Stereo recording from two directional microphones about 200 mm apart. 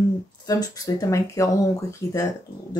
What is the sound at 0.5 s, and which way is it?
Speech, 15° left (ahead or behind).